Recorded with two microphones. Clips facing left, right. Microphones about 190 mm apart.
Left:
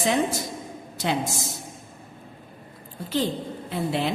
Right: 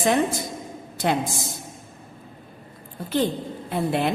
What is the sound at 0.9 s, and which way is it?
Speech, 55° right (ahead or behind).